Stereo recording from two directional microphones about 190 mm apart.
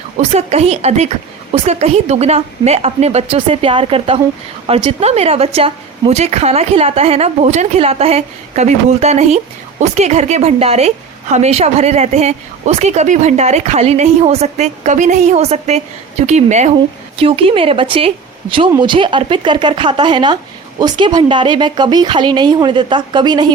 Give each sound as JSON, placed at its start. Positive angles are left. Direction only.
{"t": 0.2, "sound": "a woman's voice", "side_deg": -35}